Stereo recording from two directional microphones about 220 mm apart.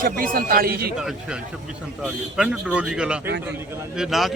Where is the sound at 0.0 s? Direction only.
40° right (ahead or behind).